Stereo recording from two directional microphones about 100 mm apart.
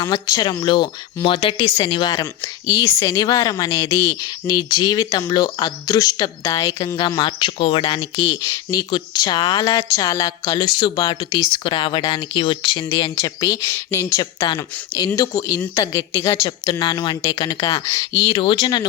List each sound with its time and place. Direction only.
0.0 s speech: 45° left (ahead or behind); by 1.8 s 75° left (ahead or behind)
1.9 s speech: 45° left (ahead or behind)
2.6 s speech: 35° left (ahead or behind)
3.2 s speech: 40° left (ahead or behind)
4.1 s speech: 45° left (ahead or behind); by 8.2 s 65° left (ahead or behind)
8.2 s speech: 40° left (ahead or behind)
13.7 s speech: 30° left (ahead or behind)
14.4 s speech: 45° left (ahead or behind)
16.8 s speech: 50° left (ahead or behind)